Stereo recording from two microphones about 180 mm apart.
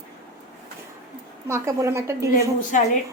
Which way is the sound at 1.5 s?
15° right (ahead or behind).